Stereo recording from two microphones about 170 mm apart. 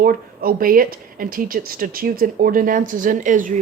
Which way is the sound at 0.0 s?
55° right (ahead or behind).